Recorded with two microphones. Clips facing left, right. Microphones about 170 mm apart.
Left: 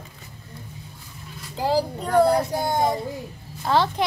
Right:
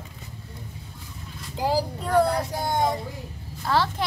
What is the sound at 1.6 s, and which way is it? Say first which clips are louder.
Speech: left 2 dB; 15° right (ahead or behind).